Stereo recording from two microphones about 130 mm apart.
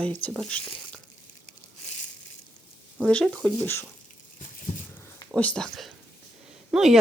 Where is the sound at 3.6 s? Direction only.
20° left (ahead or behind).